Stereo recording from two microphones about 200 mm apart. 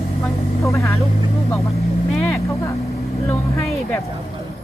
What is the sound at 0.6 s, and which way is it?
Speech, 15° left (ahead or behind).